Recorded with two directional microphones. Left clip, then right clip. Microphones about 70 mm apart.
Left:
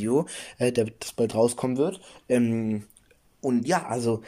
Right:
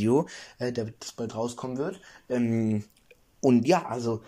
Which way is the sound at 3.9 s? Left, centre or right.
Left.